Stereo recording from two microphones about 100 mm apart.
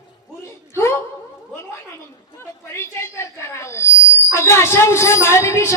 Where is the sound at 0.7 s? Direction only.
25° left (ahead or behind).